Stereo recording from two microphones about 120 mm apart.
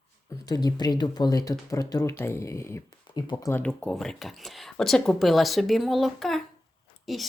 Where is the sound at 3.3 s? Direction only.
25° left (ahead or behind).